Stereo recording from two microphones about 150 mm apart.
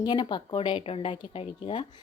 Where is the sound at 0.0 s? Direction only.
30° left (ahead or behind).